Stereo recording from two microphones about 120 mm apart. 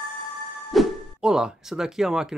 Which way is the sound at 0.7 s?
Centre (ahead or behind).